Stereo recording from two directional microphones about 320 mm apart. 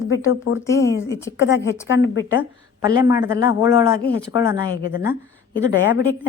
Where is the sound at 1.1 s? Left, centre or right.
Centre.